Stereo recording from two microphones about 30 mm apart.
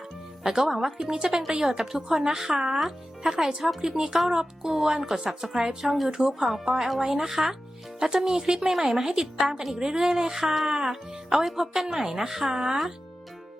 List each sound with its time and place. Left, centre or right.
0.4 s speech: centre
1.9 s a woman's voice: centre
8.9 s a woman's voice: centre
9.7 s speech: right; by 10.7 s centre
10.7 s a woman's voice: centre